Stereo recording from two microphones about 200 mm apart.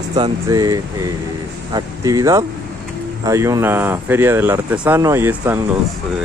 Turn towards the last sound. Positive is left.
turn(degrees=-10)  # may be behind; listen again after turning